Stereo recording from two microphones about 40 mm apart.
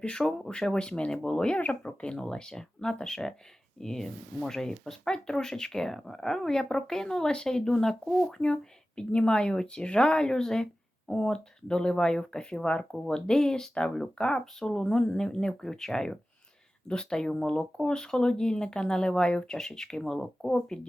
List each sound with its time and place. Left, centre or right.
0.0 s speech: left
1.5 s speech: left; by 7.9 s centre
9.0 s speech: left
14.6 s speech: centre
19.5 s speech: centre